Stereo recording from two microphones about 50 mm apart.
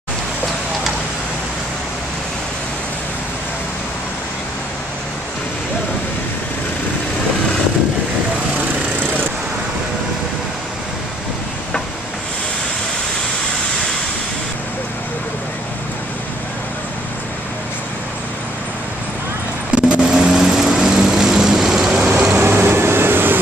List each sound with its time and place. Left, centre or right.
19.7 s lawn mower: centre
21.9 s vehicle: right
22.4 s vehicle: right